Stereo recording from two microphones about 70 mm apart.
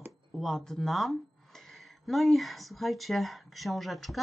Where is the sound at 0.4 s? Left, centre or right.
Centre.